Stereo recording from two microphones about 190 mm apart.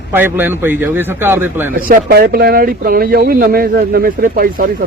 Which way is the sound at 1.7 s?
50° right (ahead or behind).